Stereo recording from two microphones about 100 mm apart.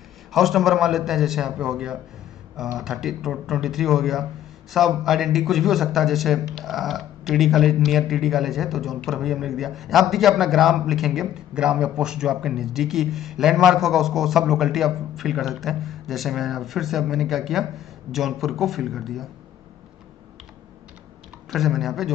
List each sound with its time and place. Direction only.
0.3 s speech: centre (ahead or behind)
21.5 s speech: centre (ahead or behind)